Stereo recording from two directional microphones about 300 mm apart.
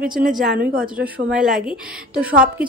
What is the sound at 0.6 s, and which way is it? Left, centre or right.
Speech, right.